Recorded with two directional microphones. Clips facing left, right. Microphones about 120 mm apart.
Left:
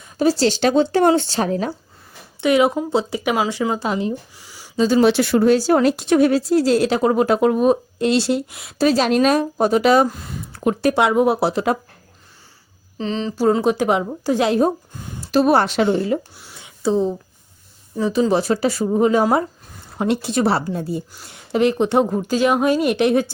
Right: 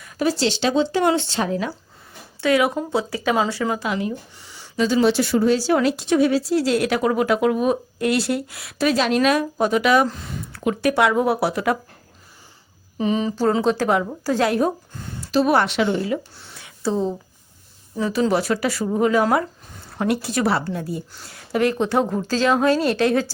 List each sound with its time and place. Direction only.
0.0 s speech: 30° left (ahead or behind)
2.4 s a woman's voice: 20° left (ahead or behind)
3.8 s speech: 30° left (ahead or behind)
4.4 s a sound: 5° left (ahead or behind)
5.0 s speech: 65° left (ahead or behind); by 8.7 s 20° left (ahead or behind)
8.8 s speech: 35° left (ahead or behind)
10.9 s speech: 20° left (ahead or behind)
13.0 s speech: 10° right (ahead or behind)
13.3 s a woman's voice: 10° left (ahead or behind)
15.4 s speech: 35° left (ahead or behind)
16.3 s a sound: 10° left (ahead or behind)
18.0 s a woman's voice: 20° left (ahead or behind)